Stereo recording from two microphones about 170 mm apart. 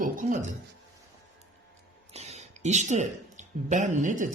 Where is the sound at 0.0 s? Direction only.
50° right (ahead or behind).